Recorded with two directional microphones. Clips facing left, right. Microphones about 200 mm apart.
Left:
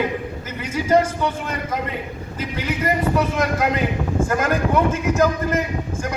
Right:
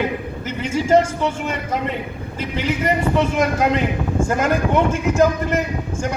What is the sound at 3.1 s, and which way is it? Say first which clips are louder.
A man's voice: right 2 dB; 25° right (ahead or behind).